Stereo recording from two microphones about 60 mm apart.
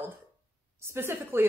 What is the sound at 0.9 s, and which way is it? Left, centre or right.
Speech, right.